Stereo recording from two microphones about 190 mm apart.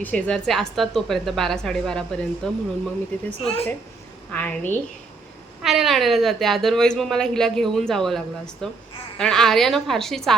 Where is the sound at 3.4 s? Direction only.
30° left (ahead or behind).